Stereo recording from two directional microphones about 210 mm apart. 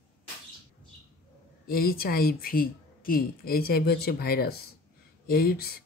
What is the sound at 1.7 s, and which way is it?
Speech, 45° left (ahead or behind).